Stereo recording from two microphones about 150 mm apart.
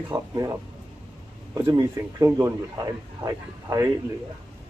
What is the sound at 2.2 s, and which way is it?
A man's voice, 20° right (ahead or behind).